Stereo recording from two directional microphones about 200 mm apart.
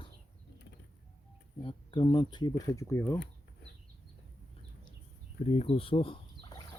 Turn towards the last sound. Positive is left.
turn(degrees=25)  # may be behind; listen again after turning